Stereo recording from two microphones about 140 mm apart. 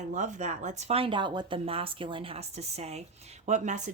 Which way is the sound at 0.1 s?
60° right (ahead or behind).